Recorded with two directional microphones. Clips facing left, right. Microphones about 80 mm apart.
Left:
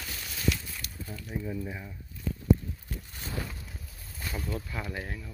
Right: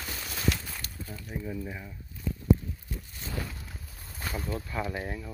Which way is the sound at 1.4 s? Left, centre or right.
Centre.